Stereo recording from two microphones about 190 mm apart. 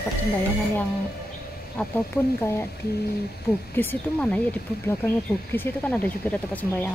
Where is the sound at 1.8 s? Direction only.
10° left (ahead or behind).